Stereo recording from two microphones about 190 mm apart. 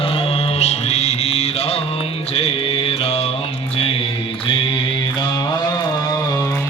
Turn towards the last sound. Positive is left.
turn(degrees=25)  # may be behind; listen again after turning